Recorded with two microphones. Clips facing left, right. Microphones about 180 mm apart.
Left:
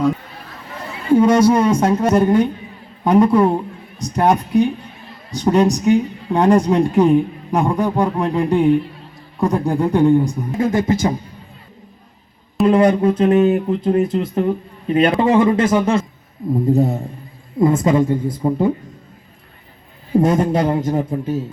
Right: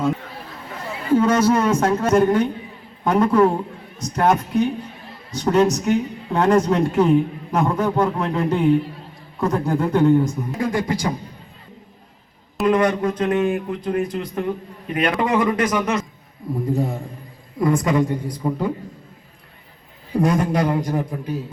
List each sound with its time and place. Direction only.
1.1 s speech: 15° left (ahead or behind)
12.6 s speech: 25° left (ahead or behind)
20.1 s speech: 25° left (ahead or behind)